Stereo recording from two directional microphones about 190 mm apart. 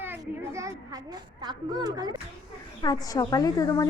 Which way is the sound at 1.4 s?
20° right (ahead or behind).